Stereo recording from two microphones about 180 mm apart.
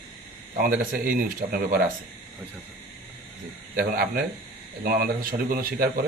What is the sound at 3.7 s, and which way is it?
Speech, 55° right (ahead or behind).